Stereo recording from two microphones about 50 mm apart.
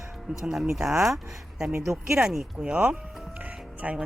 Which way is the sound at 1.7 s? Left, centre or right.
Right.